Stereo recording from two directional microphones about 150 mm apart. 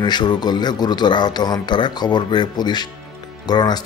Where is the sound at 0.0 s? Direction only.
30° left (ahead or behind).